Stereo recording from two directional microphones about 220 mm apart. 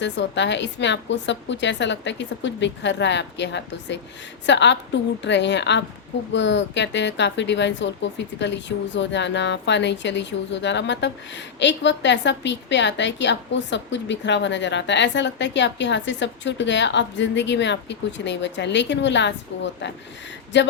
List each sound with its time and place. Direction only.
0.0 s speech: 55° left (ahead or behind)